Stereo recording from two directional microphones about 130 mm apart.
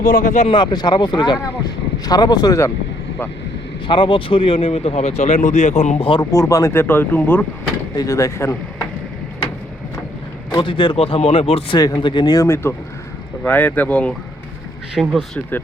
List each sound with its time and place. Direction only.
0.0 s speech: 90° left
0.4 s speech: 35° left (ahead or behind)
3.8 s speech: 40° left (ahead or behind); by 6.0 s 65° left (ahead or behind)
6.0 s speech: 40° left (ahead or behind)
6.3 s speech: 25° left (ahead or behind)
7.9 s speech: 25° left (ahead or behind)
10.5 s speech: 40° left (ahead or behind)
11.8 s speech: 35° left (ahead or behind)
13.4 s speech: 10° left (ahead or behind)